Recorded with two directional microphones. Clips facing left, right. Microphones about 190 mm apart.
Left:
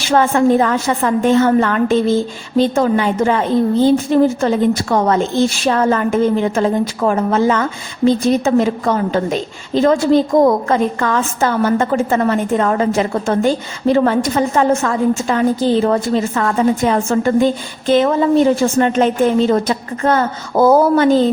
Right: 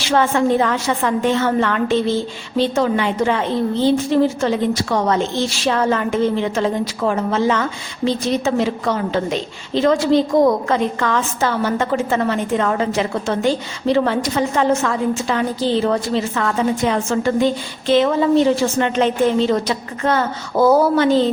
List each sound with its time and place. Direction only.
0.1 s a woman's voice: 45° left (ahead or behind)